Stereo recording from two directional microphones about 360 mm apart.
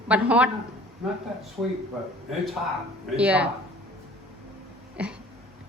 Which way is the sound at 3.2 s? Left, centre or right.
Centre.